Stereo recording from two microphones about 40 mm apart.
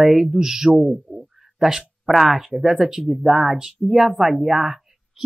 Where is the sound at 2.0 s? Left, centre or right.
Centre.